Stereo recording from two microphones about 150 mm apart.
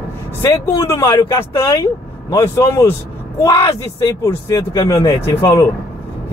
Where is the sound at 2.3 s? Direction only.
20° left (ahead or behind).